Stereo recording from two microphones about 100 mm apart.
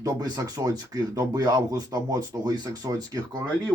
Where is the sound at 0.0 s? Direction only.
40° right (ahead or behind).